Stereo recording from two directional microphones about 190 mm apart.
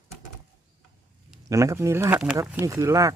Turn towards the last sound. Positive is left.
turn(degrees=-15)  # may be behind; listen again after turning